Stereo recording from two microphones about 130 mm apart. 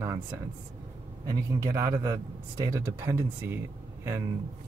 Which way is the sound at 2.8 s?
20° right (ahead or behind).